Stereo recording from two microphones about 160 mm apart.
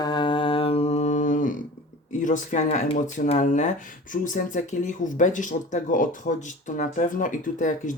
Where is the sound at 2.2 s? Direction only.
55° left (ahead or behind).